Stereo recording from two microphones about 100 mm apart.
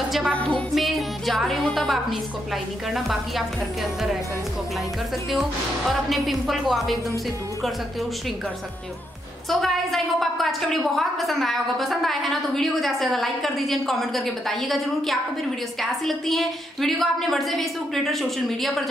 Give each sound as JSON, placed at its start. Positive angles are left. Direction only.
{"t": 0.3, "sound": "music", "side_deg": 10}
{"t": 0.7, "sound": "a woman's voice", "side_deg": 0}
{"t": 5.3, "sound": "a woman's voice", "side_deg": 0}
{"t": 9.5, "sound": "a woman's voice", "side_deg": 0}